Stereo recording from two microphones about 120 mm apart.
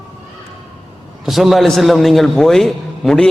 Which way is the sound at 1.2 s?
Centre (ahead or behind).